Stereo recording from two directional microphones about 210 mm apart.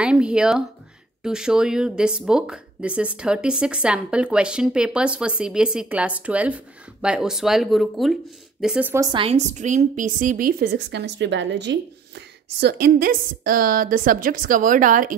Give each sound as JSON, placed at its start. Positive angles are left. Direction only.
{"t": 0.0, "sound": "speech", "side_deg": -5}